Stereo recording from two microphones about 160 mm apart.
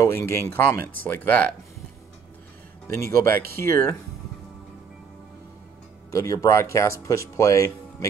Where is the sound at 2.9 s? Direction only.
15° left (ahead or behind).